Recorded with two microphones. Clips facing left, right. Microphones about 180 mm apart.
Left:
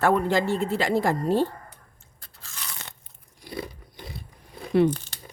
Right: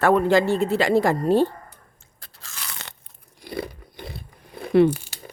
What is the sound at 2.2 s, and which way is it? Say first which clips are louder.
Crunch: right 2 dB; 80° right.